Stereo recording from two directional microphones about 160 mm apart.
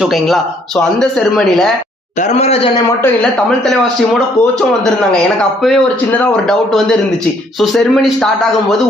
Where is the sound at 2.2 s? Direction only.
45° left (ahead or behind).